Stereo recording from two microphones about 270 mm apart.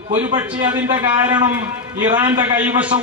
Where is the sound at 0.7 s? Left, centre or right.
Centre.